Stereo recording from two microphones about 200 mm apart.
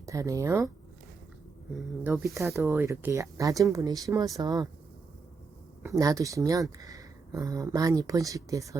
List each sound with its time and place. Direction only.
0.0 s speech: 15° right (ahead or behind)
2.0 s speech: 10° right (ahead or behind)
5.8 s speech: 15° right (ahead or behind)